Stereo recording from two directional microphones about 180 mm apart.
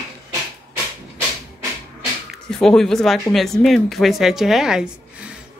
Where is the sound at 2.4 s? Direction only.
5° left (ahead or behind).